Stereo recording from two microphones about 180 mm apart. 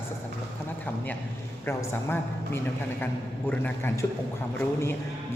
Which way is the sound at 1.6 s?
15° left (ahead or behind).